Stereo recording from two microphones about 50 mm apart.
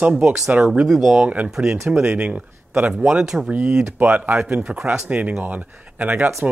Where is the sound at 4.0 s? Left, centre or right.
Right.